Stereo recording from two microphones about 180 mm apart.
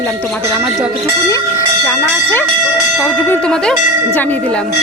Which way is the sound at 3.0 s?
10° left (ahead or behind).